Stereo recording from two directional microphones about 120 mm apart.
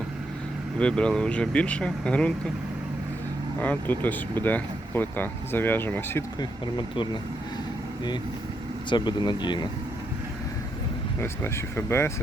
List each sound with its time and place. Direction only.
0.8 s speech: 10° left (ahead or behind)
3.6 s speech: 15° left (ahead or behind)
6.4 s speech: 40° left (ahead or behind)
8.9 s speech: 40° left (ahead or behind)
11.2 s speech: 20° left (ahead or behind)